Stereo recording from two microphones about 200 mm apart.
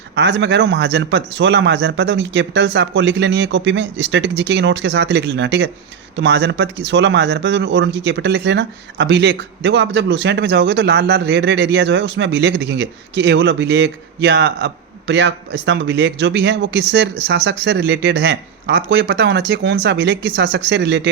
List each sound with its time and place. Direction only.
0.2 s speech: 60° right (ahead or behind)